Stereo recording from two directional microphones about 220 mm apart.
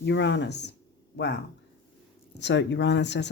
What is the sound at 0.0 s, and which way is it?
Speech, 55° left (ahead or behind).